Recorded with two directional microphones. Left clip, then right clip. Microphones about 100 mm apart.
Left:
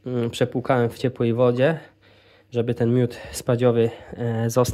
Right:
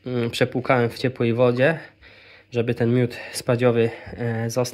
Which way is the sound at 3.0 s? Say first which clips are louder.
Right 1 dB; 35° left (ahead or behind).